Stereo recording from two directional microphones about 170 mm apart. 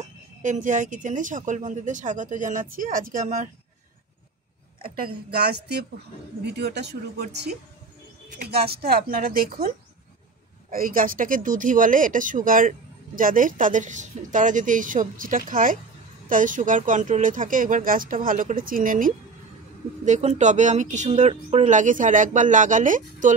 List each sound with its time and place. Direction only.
0.0 s speech: 45° right (ahead or behind)
4.8 s a woman's voice: 60° right (ahead or behind)
10.7 s speech: 55° right (ahead or behind)
20.1 s speech: 40° right (ahead or behind)